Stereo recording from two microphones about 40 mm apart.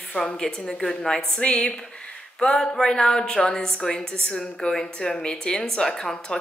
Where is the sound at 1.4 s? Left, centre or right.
Left.